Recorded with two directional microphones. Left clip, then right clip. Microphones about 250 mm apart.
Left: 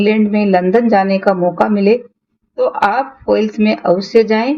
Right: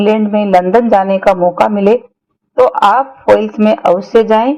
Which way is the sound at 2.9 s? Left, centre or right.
Centre.